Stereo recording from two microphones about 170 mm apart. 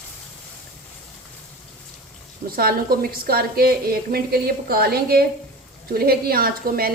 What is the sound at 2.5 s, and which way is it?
A woman's voice, 60° right (ahead or behind).